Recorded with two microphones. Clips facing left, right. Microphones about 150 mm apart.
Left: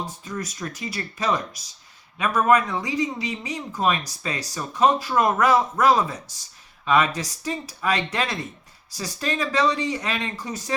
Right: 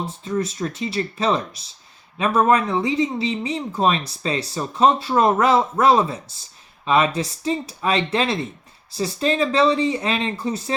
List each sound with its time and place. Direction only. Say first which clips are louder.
0.0 s speech: right 7 dB; 25° right (ahead or behind)